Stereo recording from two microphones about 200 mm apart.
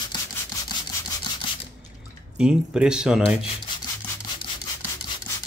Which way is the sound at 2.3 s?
5° right (ahead or behind).